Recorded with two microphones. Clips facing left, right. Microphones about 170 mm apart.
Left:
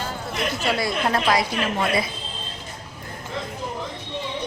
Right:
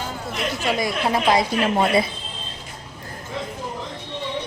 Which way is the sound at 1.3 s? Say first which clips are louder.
Right 3 dB; 25° right (ahead or behind).